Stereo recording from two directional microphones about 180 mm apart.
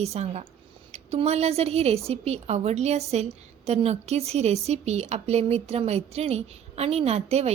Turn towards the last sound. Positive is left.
turn(degrees=-35)  # may be behind; listen again after turning